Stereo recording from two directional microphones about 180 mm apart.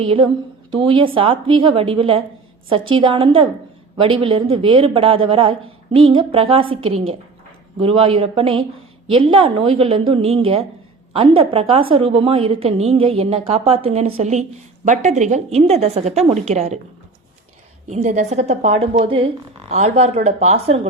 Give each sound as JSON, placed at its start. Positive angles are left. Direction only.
{"t": 0.0, "sound": "a woman's voice", "side_deg": -30}
{"t": 17.8, "sound": "a woman's voice", "side_deg": -40}